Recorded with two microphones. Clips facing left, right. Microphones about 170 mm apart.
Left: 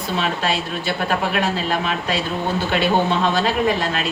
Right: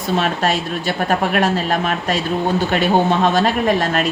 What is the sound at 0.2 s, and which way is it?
A woman's voice, 45° right (ahead or behind).